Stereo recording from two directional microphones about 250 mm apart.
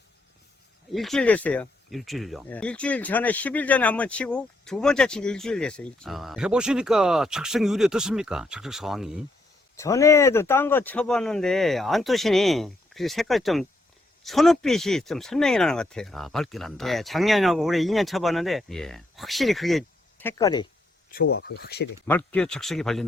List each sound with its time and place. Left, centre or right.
0.9 s speech: centre
9.7 s speech: centre
21.1 s speech: left
22.0 s speech: centre